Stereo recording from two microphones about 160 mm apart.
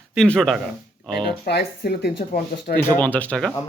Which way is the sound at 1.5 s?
90° left.